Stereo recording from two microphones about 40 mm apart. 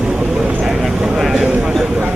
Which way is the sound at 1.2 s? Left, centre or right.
Centre.